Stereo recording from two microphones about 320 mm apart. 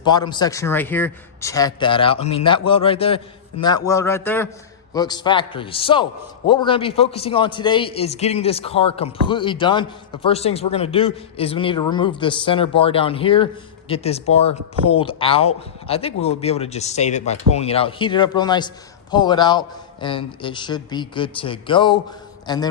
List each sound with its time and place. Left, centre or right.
0.0 s a man's voice: centre